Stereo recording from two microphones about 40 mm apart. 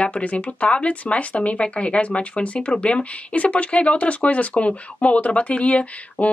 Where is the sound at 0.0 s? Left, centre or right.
Left.